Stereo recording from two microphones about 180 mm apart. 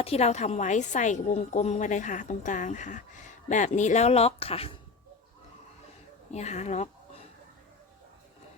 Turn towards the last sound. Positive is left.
turn(degrees=40)  # may be behind; listen again after turning